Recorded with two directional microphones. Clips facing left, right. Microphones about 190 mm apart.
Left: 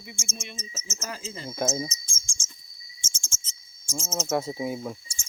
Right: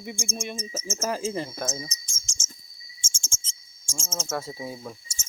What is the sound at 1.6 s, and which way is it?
Cricket, 25° left (ahead or behind).